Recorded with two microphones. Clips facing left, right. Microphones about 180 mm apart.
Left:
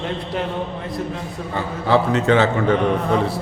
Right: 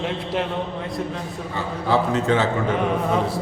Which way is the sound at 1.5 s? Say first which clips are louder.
Left 3 dB; 70° left (ahead or behind).